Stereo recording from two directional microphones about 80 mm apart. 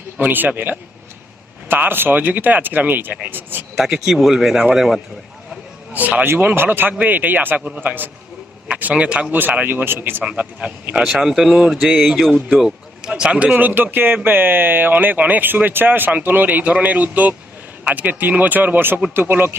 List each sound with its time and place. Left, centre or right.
0.2 s speech: right
3.8 s speech: centre
5.9 s a man's voice: centre
11.0 s speech: centre; by 19.5 s right